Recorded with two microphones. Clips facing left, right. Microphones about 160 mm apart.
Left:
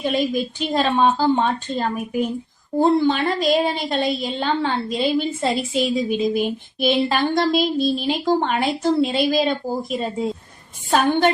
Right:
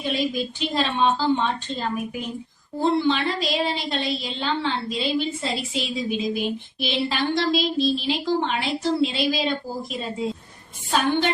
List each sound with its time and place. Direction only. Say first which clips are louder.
0.0 s a woman's voice: left 4 dB; 50° left (ahead or behind)